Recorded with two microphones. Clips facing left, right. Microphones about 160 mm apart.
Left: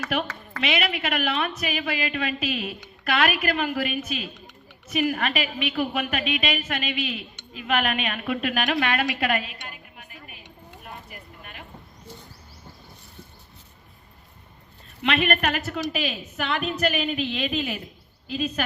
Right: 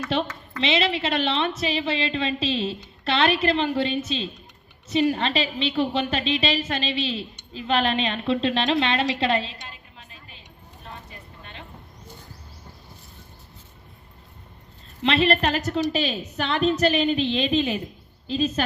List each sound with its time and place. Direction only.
0.1 s a woman's voice: 25° right (ahead or behind)
11.1 s a sound: 25° right (ahead or behind)
15.0 s a woman's voice: 30° right (ahead or behind)